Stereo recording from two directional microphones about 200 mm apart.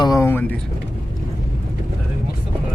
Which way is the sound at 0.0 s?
15° left (ahead or behind).